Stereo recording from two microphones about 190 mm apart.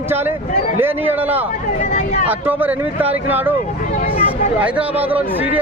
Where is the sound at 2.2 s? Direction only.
10° right (ahead or behind).